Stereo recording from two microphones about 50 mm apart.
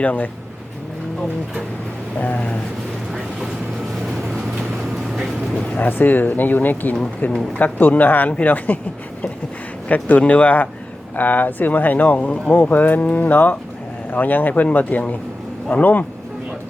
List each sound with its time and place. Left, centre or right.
0.0 s speech: left
2.1 s speech: left
4.2 s vehicle: centre
5.7 s speech: left
9.9 s speech: left